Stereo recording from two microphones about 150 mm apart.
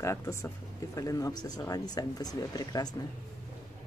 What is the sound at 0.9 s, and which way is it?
Speech, 25° left (ahead or behind).